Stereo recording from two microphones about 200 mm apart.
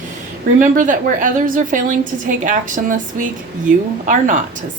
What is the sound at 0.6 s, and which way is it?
A woman's voice, 40° right (ahead or behind).